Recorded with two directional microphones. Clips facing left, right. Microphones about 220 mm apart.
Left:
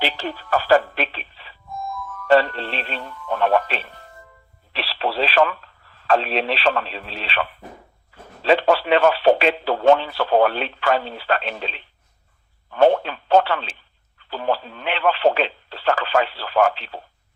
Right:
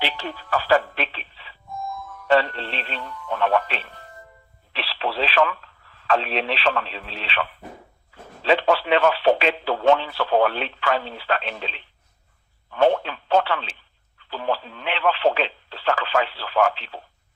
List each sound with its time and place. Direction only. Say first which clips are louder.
0.0 s music: left 3 dB; 40° left (ahead or behind)
4.7 s radio: left 3 dB; 40° left (ahead or behind)
8.4 s radio: left 2 dB; 40° left (ahead or behind)
12.7 s telephone: left 3 dB; 45° left (ahead or behind)
14.2 s radio: left 2 dB; 45° left (ahead or behind)